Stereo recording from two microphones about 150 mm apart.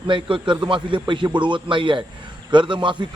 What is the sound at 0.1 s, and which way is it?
A man's voice, 35° right (ahead or behind).